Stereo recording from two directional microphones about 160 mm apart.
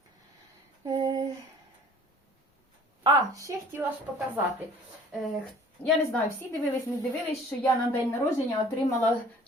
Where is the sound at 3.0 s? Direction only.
20° right (ahead or behind).